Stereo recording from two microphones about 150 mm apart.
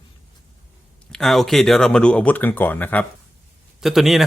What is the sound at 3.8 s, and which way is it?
Speech, centre (ahead or behind).